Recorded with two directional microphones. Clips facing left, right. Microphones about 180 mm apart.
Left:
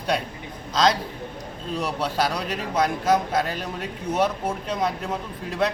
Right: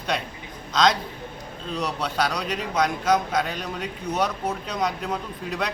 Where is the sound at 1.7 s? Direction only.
5° left (ahead or behind).